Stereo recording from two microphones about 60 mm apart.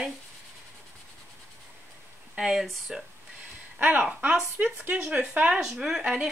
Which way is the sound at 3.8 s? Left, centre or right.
Right.